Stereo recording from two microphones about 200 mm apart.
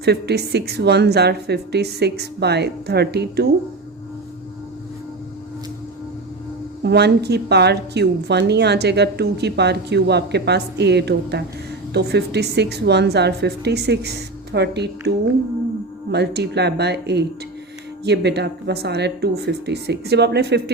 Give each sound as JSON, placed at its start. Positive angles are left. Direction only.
{"t": 0.0, "sound": "a woman's voice", "side_deg": -55}
{"t": 6.8, "sound": "a woman's voice", "side_deg": -55}